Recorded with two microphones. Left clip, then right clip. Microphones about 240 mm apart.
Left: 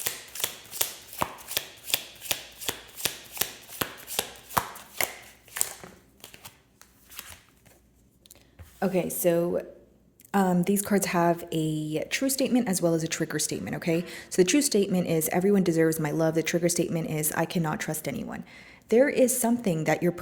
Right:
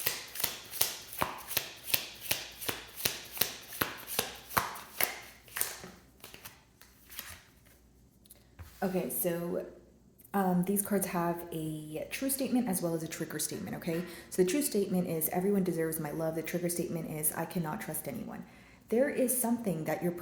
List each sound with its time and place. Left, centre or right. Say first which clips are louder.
0.8 s chopping: left 4 dB; left
7.2 s a sound: left 2 dB; left
8.8 s a woman's voice: left 8 dB; left